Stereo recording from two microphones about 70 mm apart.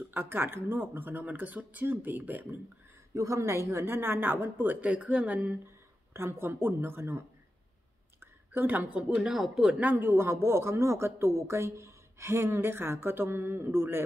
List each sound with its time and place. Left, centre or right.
0.1 s speech: right
3.2 s a man's voice: right
6.1 s a man's voice: right; by 9.8 s centre
9.8 s a man's voice: right